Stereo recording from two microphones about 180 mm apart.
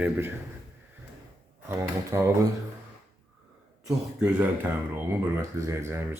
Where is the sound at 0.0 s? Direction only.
10° right (ahead or behind).